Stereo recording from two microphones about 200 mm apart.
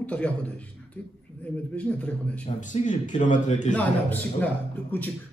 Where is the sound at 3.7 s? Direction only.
10° left (ahead or behind).